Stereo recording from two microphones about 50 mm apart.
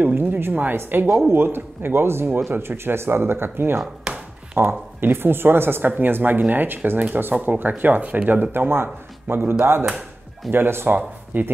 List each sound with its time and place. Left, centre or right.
0.0 s speech: right
4.1 s a sound: centre
4.6 s speech: right
11.0 s speech: right